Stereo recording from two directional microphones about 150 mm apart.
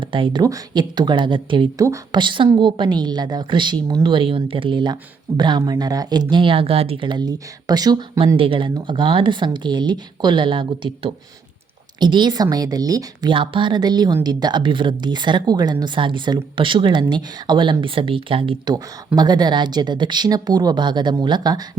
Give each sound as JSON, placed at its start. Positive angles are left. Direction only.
{"t": 0.0, "sound": "a woman's voice", "side_deg": -35}